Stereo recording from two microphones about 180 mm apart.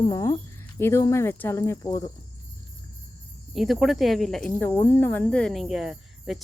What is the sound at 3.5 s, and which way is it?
Speech, centre (ahead or behind).